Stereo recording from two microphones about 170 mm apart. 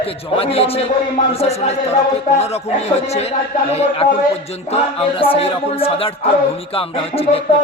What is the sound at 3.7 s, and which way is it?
Speech, 40° left (ahead or behind).